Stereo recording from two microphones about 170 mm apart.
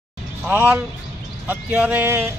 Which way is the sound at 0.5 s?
10° right (ahead or behind).